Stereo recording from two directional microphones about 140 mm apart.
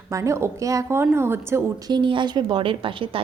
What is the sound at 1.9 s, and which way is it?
A woman's voice, 35° right (ahead or behind).